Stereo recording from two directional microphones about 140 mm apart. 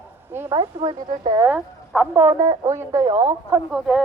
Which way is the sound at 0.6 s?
35° right (ahead or behind).